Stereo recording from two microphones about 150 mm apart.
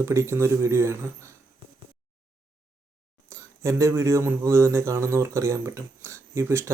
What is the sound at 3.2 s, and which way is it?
Speech, 20° right (ahead or behind).